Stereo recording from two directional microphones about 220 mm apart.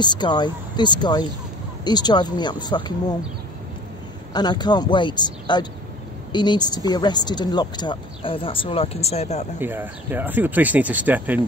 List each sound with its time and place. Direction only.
0.0 s speech: 20° left (ahead or behind)
4.3 s speech: 20° left (ahead or behind)
9.6 s speech: 10° right (ahead or behind)